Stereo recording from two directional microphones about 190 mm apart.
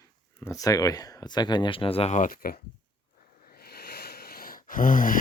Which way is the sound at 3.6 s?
55° left (ahead or behind).